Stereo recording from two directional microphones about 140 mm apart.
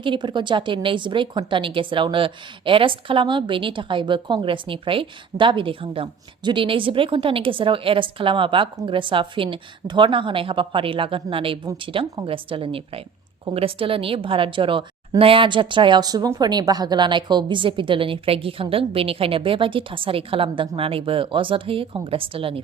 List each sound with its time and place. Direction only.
0.0 s a woman's voice: 35° right (ahead or behind)